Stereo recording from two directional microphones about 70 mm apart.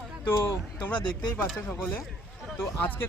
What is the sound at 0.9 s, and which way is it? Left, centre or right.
Speech, left.